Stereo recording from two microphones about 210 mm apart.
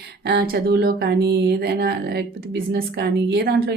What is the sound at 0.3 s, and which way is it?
Speech, 50° right (ahead or behind).